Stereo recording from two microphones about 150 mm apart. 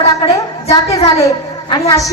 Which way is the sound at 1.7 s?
25° left (ahead or behind).